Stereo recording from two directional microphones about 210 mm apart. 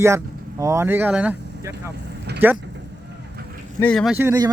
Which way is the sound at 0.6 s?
15° right (ahead or behind).